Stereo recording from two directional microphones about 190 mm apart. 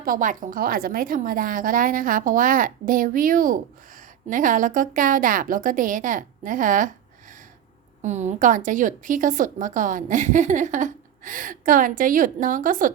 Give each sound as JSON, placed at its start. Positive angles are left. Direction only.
{"t": 0.0, "sound": "a woman's voice", "side_deg": -45}